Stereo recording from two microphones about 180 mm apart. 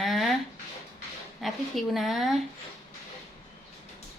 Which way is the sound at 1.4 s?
Centre (ahead or behind).